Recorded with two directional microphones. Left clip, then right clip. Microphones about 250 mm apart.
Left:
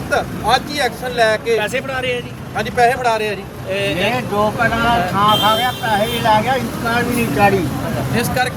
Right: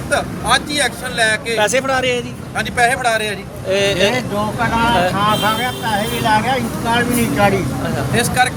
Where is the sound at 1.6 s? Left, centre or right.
Right.